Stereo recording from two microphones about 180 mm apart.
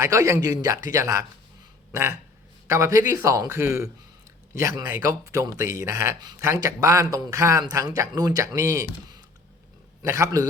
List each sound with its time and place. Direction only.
0.0 s speech: 15° right (ahead or behind)
1.9 s a sound: 15° right (ahead or behind)
2.6 s a man's voice: 15° right (ahead or behind)
10.0 s speech: 20° right (ahead or behind)